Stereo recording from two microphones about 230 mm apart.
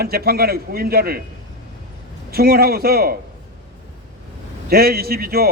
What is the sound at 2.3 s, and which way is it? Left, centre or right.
Speech, right.